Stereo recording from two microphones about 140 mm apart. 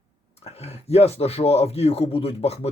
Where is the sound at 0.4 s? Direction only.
50° left (ahead or behind).